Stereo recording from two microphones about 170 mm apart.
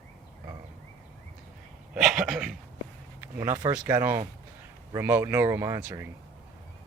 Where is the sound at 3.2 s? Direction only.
15° right (ahead or behind).